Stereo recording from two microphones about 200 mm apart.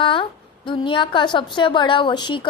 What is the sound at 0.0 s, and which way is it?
A woman's voice, 25° left (ahead or behind).